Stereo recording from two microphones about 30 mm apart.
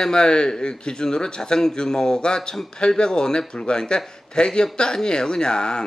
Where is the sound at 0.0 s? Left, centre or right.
Left.